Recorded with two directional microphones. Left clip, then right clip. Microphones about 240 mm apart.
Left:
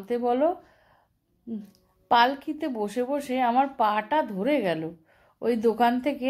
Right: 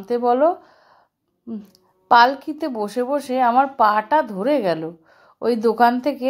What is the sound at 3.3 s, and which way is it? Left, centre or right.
A woman's voice, right.